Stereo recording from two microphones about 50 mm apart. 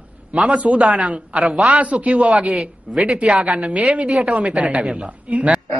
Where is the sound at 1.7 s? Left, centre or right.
Right.